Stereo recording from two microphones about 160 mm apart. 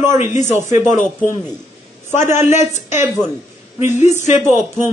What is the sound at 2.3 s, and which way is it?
Speech, 45° left (ahead or behind).